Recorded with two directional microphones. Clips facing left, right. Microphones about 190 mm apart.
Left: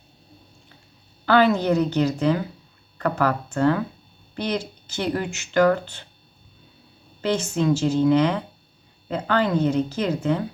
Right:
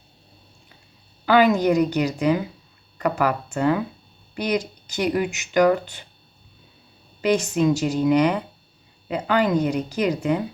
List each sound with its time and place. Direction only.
1.2 s speech: 10° right (ahead or behind)
7.2 s speech: 15° right (ahead or behind)